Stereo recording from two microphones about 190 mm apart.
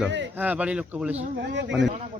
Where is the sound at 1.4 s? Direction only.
70° right (ahead or behind).